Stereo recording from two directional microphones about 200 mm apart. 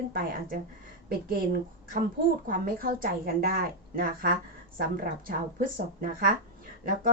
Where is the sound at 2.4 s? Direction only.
45° right (ahead or behind).